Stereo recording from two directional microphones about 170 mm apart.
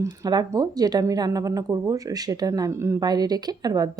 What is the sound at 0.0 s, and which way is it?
Speech, 25° right (ahead or behind).